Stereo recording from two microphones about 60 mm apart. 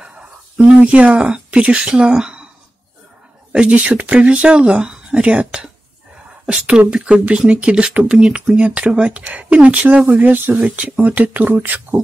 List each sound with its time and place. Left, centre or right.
0.0 s a sound: centre
0.7 s speech: centre
3.5 s speech: centre